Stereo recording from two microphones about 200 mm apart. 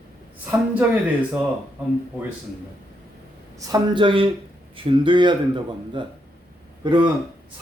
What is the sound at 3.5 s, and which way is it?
Speech, 20° right (ahead or behind).